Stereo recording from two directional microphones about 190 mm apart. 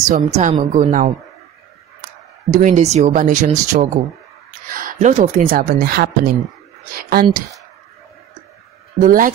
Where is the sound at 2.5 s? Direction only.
40° right (ahead or behind).